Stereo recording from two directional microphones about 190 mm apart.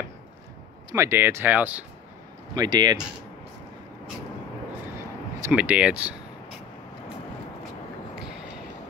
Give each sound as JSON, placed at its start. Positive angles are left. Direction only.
{"t": 0.9, "sound": "speech", "side_deg": -15}
{"t": 2.5, "sound": "speech", "side_deg": -20}
{"t": 5.5, "sound": "speech", "side_deg": -5}